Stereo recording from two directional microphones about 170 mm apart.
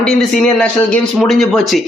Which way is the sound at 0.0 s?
5° left (ahead or behind).